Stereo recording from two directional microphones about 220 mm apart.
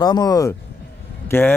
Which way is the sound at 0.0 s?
20° left (ahead or behind).